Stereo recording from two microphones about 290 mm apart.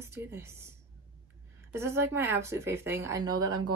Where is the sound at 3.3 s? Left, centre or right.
Right.